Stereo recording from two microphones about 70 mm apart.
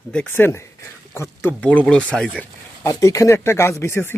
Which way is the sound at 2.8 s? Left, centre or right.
Left.